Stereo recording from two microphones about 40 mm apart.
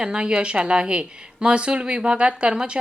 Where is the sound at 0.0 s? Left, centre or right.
Right.